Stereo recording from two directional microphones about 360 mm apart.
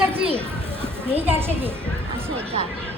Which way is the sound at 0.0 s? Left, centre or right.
Centre.